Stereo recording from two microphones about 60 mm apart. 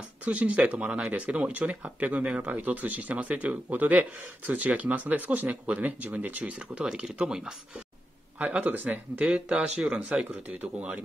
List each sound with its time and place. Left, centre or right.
0.2 s speech: right
6.7 s speech: centre
8.4 s speech: right
9.2 s speech: centre
10.2 s speech: right